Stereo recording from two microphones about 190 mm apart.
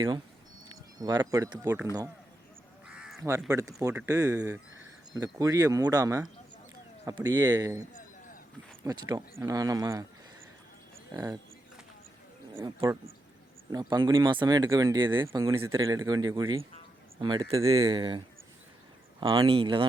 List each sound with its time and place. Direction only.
0.9 s speech: 20° right (ahead or behind)
2.8 s crow: 5° right (ahead or behind)
3.5 s speech: 15° right (ahead or behind)
11.1 s speech: 20° right (ahead or behind)
12.5 s speech: 15° right (ahead or behind)
19.2 s speech: 25° right (ahead or behind)